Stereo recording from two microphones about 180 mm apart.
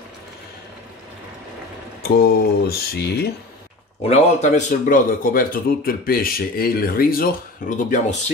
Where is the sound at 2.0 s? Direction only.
60° left (ahead or behind).